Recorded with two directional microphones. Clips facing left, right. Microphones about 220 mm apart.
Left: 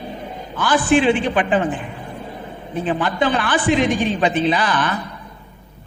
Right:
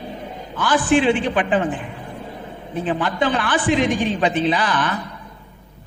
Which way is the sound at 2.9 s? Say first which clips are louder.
Left 1 dB; 20° left (ahead or behind).